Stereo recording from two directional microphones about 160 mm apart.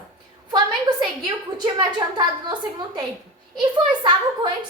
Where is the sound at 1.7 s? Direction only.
25° right (ahead or behind).